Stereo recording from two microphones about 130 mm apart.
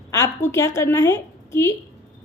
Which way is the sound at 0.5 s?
20° left (ahead or behind).